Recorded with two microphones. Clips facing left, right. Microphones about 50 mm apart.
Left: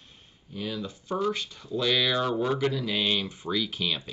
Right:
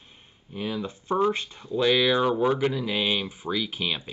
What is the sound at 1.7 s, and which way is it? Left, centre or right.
Speech, centre.